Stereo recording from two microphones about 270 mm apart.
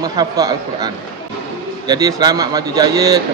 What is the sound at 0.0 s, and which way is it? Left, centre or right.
A man's voice, centre.